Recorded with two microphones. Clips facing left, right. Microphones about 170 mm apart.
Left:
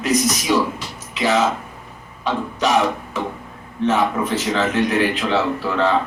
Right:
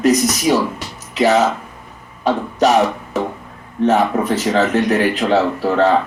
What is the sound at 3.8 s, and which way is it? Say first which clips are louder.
Speech: right 4 dB; 45° right (ahead or behind).